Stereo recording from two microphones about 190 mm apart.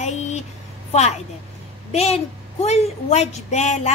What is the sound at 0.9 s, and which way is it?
Speech, 35° left (ahead or behind).